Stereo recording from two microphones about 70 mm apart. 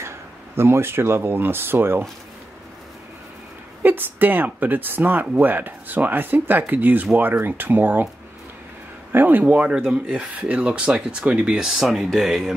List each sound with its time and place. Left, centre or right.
0.6 s speech: right
3.8 s speech: right
9.1 s speech: right; by 12.5 s centre